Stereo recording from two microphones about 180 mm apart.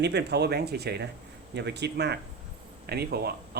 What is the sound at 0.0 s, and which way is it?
Speech, 70° right (ahead or behind).